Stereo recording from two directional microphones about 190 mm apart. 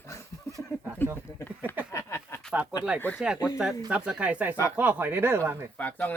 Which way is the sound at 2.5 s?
5° right (ahead or behind).